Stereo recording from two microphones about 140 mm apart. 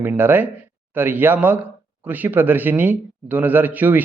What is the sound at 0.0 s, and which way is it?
Speech, 15° right (ahead or behind).